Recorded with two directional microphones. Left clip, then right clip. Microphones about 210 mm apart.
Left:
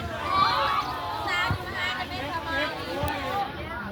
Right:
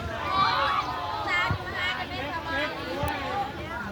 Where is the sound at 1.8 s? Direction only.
20° left (ahead or behind).